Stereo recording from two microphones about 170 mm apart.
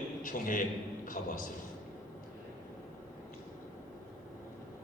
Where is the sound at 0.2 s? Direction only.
55° left (ahead or behind).